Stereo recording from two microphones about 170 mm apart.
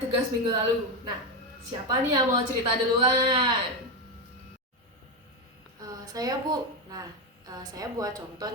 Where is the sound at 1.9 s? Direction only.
20° right (ahead or behind).